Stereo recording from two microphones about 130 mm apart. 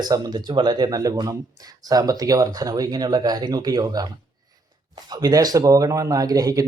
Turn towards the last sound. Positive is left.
turn(degrees=-30)  # may be behind; listen again after turning